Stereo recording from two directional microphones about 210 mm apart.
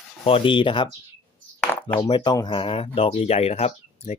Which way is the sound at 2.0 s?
20° left (ahead or behind).